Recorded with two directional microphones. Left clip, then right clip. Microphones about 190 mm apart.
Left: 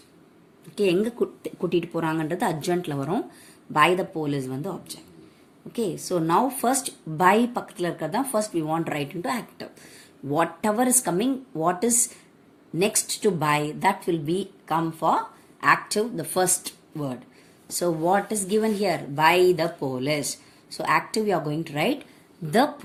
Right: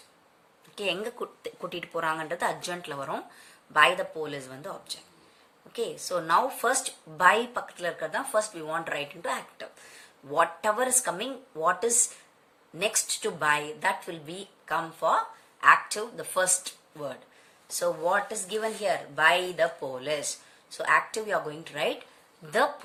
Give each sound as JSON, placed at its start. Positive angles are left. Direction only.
{"t": 0.8, "sound": "speech", "side_deg": 25}
{"t": 5.7, "sound": "speech", "side_deg": 25}
{"t": 13.1, "sound": "speech", "side_deg": 25}
{"t": 17.7, "sound": "speech", "side_deg": 25}